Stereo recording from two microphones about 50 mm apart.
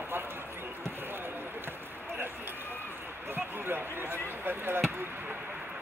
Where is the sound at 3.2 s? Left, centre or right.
Right.